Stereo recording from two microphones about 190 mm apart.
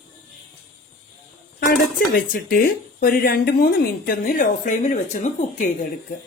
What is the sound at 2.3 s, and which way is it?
Speech, 50° left (ahead or behind).